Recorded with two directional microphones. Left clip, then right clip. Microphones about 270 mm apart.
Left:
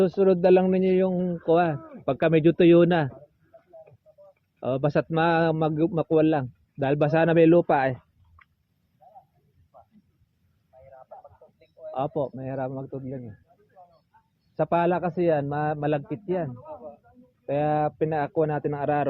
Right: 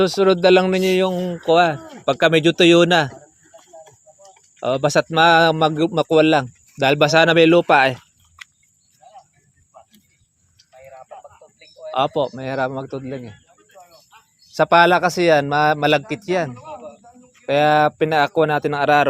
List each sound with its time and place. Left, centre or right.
0.0 s a man's voice: centre
4.6 s a man's voice: centre
11.6 s a man's voice: right
14.5 s a man's voice: right